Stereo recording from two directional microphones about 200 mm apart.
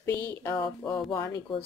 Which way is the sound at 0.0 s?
15° left (ahead or behind).